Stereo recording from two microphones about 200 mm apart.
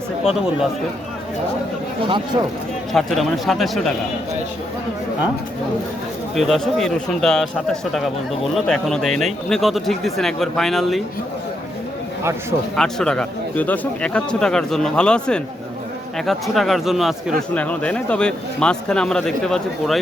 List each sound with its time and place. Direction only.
2.0 s a man's voice: 25° right (ahead or behind)
2.9 s speech: centre (ahead or behind)
6.3 s speech: centre (ahead or behind)
12.7 s speech: 5° left (ahead or behind)